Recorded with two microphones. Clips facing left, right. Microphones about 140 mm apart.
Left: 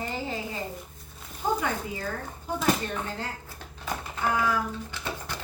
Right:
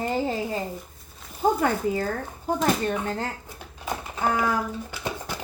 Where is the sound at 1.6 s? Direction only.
45° right (ahead or behind).